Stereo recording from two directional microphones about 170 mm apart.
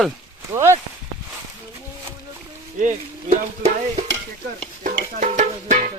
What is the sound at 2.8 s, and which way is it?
Speech, 45° right (ahead or behind).